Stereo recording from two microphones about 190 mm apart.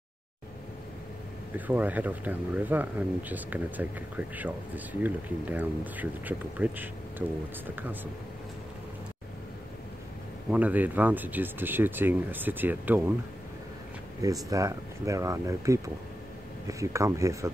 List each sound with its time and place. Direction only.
1.7 s speech: 10° right (ahead or behind)
10.5 s speech: 10° right (ahead or behind)
14.2 s speech: 15° right (ahead or behind)